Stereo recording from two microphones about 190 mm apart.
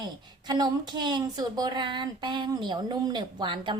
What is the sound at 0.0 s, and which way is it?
A woman's voice, 20° right (ahead or behind).